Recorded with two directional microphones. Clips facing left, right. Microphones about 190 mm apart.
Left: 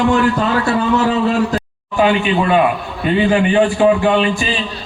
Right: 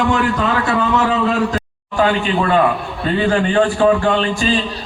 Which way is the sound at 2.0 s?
15° left (ahead or behind).